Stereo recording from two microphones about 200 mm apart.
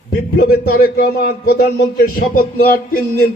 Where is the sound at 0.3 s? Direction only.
50° left (ahead or behind).